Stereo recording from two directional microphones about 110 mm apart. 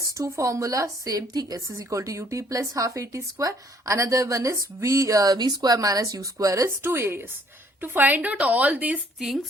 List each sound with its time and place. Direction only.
0.0 s speech: 30° right (ahead or behind); by 9.0 s 15° right (ahead or behind)